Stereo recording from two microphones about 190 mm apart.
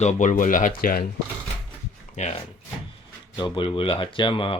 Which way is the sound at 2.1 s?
35° left (ahead or behind).